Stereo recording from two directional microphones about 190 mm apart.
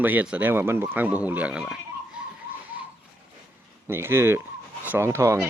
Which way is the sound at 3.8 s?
10° right (ahead or behind).